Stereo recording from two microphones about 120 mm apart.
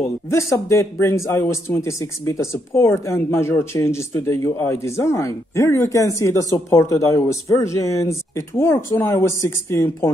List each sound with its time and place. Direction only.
0.3 s speech: 25° left (ahead or behind)